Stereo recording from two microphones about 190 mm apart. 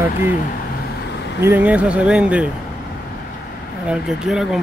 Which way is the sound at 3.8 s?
5° right (ahead or behind).